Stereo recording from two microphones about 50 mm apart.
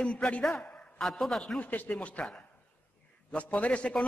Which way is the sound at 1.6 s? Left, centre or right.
Left.